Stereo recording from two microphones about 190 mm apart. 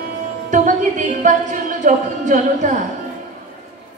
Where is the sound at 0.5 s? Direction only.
40° right (ahead or behind).